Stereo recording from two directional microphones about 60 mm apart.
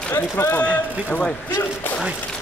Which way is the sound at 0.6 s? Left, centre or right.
Left.